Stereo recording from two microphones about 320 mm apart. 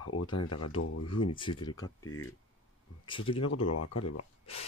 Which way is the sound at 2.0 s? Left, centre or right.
Left.